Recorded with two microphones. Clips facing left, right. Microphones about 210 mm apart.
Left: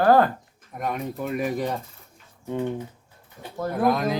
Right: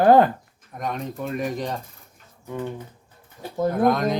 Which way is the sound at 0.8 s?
5° left (ahead or behind).